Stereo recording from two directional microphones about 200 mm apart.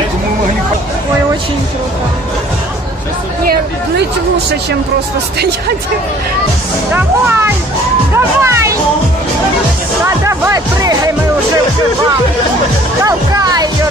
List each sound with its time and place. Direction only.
6.9 s speech: 10° right (ahead or behind)
8.1 s music: 15° right (ahead or behind)
10.0 s music: 15° right (ahead or behind)
13.0 s music: 20° right (ahead or behind)